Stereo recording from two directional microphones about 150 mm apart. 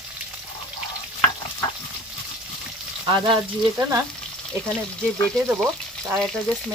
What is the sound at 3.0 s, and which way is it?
Speech, 30° right (ahead or behind).